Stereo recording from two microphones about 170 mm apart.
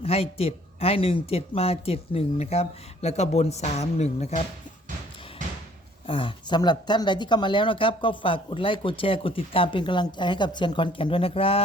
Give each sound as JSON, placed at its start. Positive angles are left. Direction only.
{"t": 0.0, "sound": "speech", "side_deg": 35}
{"t": 6.1, "sound": "speech", "side_deg": 30}